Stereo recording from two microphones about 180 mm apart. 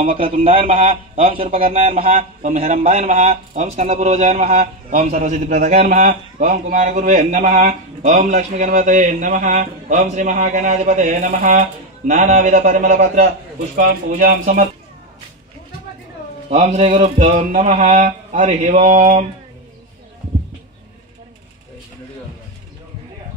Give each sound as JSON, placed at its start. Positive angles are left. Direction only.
{"t": 0.0, "sound": "a man's voice", "side_deg": -50}
{"t": 16.4, "sound": "a man's voice", "side_deg": -30}